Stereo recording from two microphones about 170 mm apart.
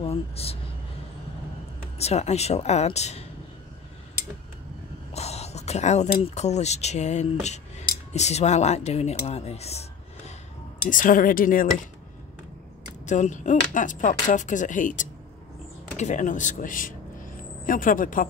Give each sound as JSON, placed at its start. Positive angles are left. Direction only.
{"t": 0.0, "sound": "speech", "side_deg": 35}
{"t": 2.0, "sound": "speech", "side_deg": 40}
{"t": 5.1, "sound": "speech", "side_deg": 40}
{"t": 10.9, "sound": "speech", "side_deg": 50}
{"t": 13.0, "sound": "speech", "side_deg": 45}